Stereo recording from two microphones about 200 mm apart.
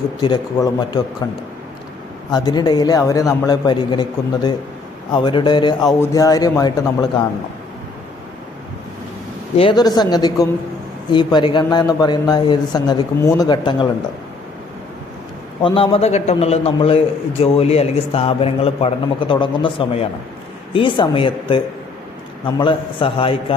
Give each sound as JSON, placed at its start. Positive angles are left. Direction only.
{"t": 0.2, "sound": "a man's voice", "side_deg": 20}
{"t": 2.3, "sound": "a man's voice", "side_deg": 20}
{"t": 5.1, "sound": "a man's voice", "side_deg": 25}
{"t": 9.6, "sound": "a man's voice", "side_deg": 25}
{"t": 15.6, "sound": "a man's voice", "side_deg": 25}